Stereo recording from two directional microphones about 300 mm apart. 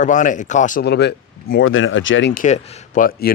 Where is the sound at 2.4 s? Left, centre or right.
Left.